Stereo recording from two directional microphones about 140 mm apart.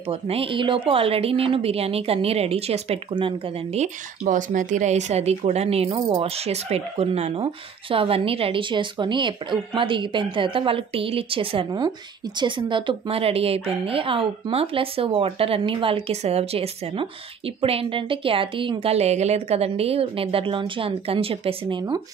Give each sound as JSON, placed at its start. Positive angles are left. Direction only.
{"t": 0.1, "sound": "speech", "side_deg": -45}
{"t": 4.2, "sound": "speech", "side_deg": -70}